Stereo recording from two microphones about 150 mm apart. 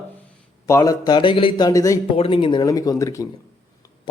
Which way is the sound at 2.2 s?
35° left (ahead or behind).